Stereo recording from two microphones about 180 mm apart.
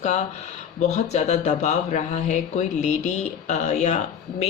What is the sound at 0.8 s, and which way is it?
Speech, 40° left (ahead or behind).